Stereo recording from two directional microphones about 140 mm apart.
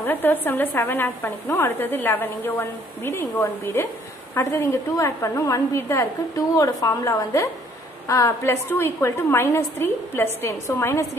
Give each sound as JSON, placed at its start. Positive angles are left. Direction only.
{"t": 0.0, "sound": "a woman's voice", "side_deg": 15}